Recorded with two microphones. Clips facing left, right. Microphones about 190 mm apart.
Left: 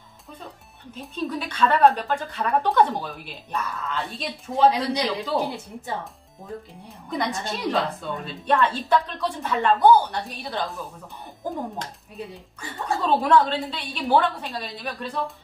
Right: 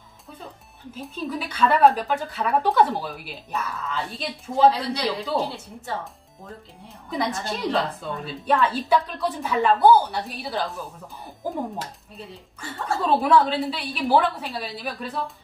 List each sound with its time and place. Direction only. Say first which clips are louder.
0.9 s a woman's voice: left 1 dB; centre (ahead or behind)
4.6 s speech: even; 15° left (ahead or behind)
7.1 s a woman's voice: right 1 dB; centre (ahead or behind)
12.2 s speech: left 4 dB; 15° left (ahead or behind)
13.0 s a woman's voice: even; centre (ahead or behind)